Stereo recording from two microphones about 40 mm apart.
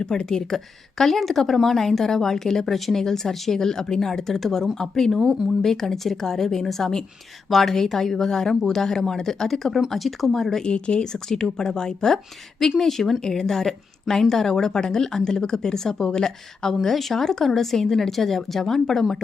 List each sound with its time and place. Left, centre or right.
0.0 s a woman's voice: centre
10.7 s a woman's voice: left
16.8 s a woman's voice: centre